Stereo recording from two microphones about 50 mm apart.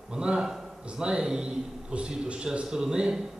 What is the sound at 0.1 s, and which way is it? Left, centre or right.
A man's voice, centre.